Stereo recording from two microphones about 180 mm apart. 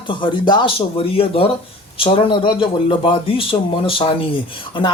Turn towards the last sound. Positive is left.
turn(degrees=30)  # may be behind; listen again after turning